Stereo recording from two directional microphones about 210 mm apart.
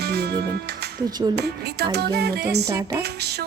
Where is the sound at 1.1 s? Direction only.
20° right (ahead or behind).